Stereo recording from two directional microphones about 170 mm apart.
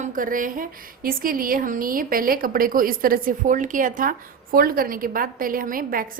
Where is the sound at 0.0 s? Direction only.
50° right (ahead or behind).